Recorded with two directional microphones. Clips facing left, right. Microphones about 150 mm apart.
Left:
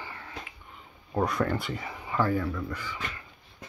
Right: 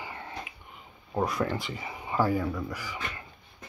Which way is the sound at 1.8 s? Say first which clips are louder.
Right 1 dB; 20° right (ahead or behind).